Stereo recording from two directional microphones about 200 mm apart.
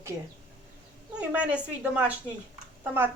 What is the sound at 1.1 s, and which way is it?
Speech, 5° right (ahead or behind).